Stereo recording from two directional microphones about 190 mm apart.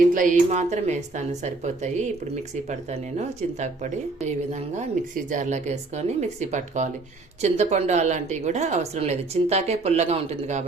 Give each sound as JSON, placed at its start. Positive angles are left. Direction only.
{"t": 0.0, "sound": "speech", "side_deg": -45}